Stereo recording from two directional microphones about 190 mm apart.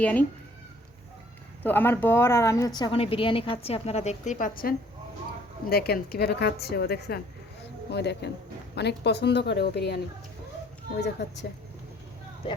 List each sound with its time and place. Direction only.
0.0 s speech: 10° left (ahead or behind)
1.6 s a woman's voice: 10° left (ahead or behind); by 11.3 s 65° left (ahead or behind)
12.4 s speech: 25° left (ahead or behind)